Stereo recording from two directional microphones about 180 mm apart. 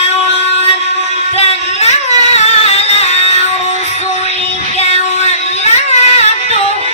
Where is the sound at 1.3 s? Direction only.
35° left (ahead or behind).